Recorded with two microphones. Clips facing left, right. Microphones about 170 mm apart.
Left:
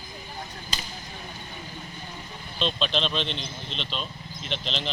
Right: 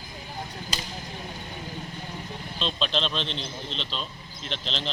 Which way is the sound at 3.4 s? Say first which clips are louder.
Right 1 dB; 35° right (ahead or behind).